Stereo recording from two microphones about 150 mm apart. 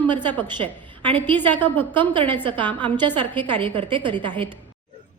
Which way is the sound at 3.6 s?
35° right (ahead or behind).